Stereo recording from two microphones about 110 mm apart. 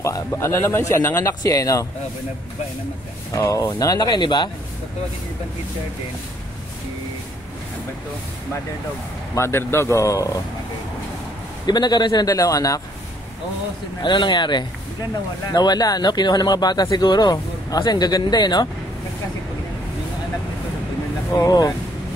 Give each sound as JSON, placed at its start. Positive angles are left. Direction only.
{"t": 0.0, "sound": "a man's voice", "side_deg": 25}
{"t": 3.3, "sound": "speech", "side_deg": 30}
{"t": 9.3, "sound": "a man's voice", "side_deg": 25}
{"t": 11.6, "sound": "speech", "side_deg": 40}
{"t": 14.0, "sound": "speech", "side_deg": 45}
{"t": 21.3, "sound": "speech", "side_deg": 35}